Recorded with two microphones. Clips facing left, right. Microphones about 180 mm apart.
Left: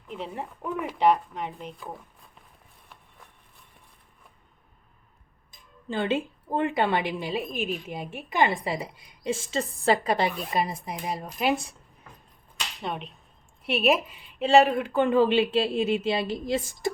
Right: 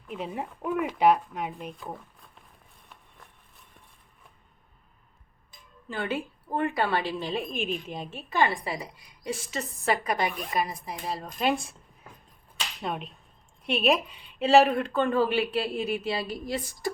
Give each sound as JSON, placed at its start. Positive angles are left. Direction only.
{"t": 0.1, "sound": "speech", "side_deg": -10}
{"t": 5.9, "sound": "a woman's voice", "side_deg": 25}
{"t": 10.9, "sound": "speech", "side_deg": 15}
{"t": 12.8, "sound": "a woman's voice", "side_deg": 0}
{"t": 15.0, "sound": "a woman's voice", "side_deg": 20}